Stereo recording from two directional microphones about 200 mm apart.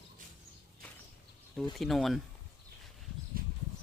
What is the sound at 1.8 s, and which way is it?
Speech, centre (ahead or behind).